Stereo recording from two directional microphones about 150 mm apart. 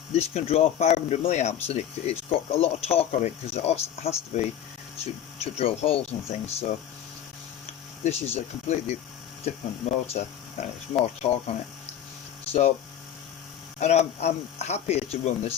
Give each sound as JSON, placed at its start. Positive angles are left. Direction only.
{"t": 0.1, "sound": "speech", "side_deg": 45}
{"t": 8.0, "sound": "speech", "side_deg": 45}
{"t": 10.2, "sound": "speech", "side_deg": 45}
{"t": 13.7, "sound": "speech", "side_deg": 50}